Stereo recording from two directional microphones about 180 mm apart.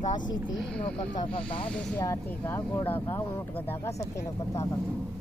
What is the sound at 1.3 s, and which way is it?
Speech, 25° left (ahead or behind).